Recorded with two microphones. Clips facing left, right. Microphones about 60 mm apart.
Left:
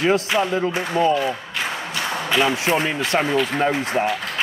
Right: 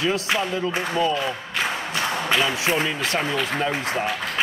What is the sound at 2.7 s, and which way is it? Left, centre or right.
Speech, centre.